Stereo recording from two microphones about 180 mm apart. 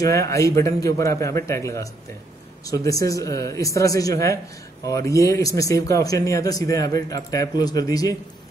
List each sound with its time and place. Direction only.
0.0 s a man's voice: 15° left (ahead or behind)